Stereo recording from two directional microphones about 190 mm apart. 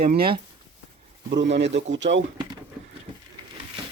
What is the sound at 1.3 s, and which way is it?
Speech, 65° right (ahead or behind).